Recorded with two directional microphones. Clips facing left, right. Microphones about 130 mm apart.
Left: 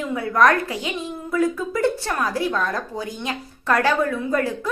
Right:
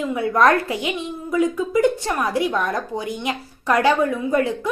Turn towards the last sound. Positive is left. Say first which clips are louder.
# right 2 dB
turn(degrees=-20)  # may be behind; listen again after turning